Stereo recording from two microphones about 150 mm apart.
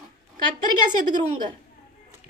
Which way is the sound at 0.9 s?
30° right (ahead or behind).